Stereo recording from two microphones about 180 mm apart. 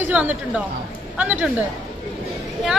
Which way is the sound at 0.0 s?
10° right (ahead or behind).